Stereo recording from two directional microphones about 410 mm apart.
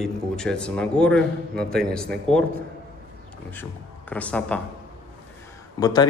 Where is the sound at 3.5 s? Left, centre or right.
Centre.